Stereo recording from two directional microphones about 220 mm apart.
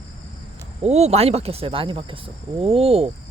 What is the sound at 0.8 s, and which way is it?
Speech, 30° right (ahead or behind).